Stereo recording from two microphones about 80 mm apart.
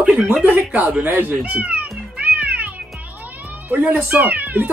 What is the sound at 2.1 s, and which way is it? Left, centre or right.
Music, centre.